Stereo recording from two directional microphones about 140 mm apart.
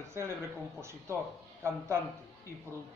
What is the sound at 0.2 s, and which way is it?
Speech, 20° right (ahead or behind).